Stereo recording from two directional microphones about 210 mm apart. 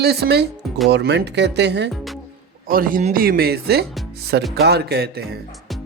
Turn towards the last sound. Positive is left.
turn(degrees=-50)  # may be behind; listen again after turning